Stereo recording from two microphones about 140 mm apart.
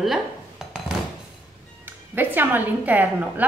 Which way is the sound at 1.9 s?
15° right (ahead or behind).